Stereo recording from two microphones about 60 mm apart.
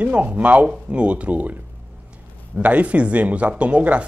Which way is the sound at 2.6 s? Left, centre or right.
Right.